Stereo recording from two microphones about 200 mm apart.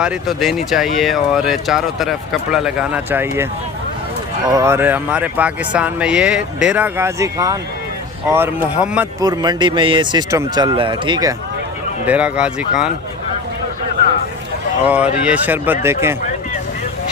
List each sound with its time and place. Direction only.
0.0 s speech: centre (ahead or behind)
4.4 s speech: 15° right (ahead or behind)
9.2 s speech: 20° right (ahead or behind)
12.0 s speech: 5° right (ahead or behind)
14.8 s speech: 5° right (ahead or behind)